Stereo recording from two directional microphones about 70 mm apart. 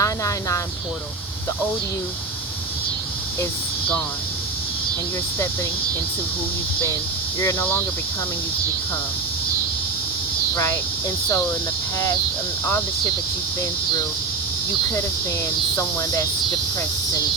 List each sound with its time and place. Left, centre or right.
0.0 s speech: left
7.3 s speech: left
10.5 s speech: left
15.7 s cricket: left